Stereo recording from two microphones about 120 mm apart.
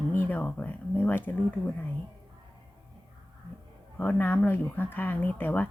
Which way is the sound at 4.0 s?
15° left (ahead or behind).